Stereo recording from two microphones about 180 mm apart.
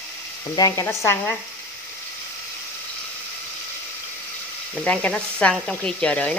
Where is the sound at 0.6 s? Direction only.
20° left (ahead or behind).